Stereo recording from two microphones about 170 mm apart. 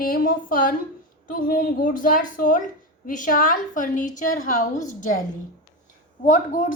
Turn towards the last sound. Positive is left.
turn(degrees=50)  # may be behind; listen again after turning